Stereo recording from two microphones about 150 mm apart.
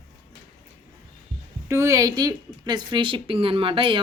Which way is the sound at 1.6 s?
20° right (ahead or behind).